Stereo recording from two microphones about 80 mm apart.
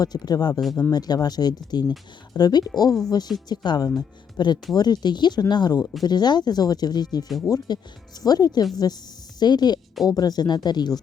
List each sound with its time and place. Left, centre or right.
0.0 s speech: left